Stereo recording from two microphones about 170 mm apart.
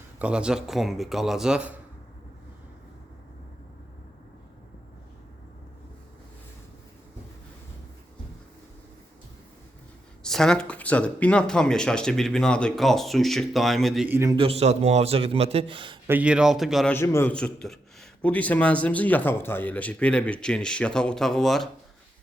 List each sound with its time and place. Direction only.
0.2 s speech: 5° right (ahead or behind)
10.2 s speech: 5° left (ahead or behind)
14.1 s a man's voice: 15° right (ahead or behind)
14.3 s a man's voice: 35° right (ahead or behind)
16.0 s speech: 10° right (ahead or behind)
16.9 s a man's voice: 15° left (ahead or behind)